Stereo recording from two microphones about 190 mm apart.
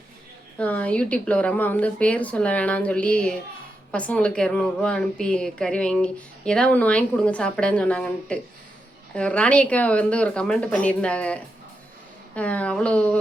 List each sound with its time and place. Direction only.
0.6 s a woman's voice: 5° left (ahead or behind)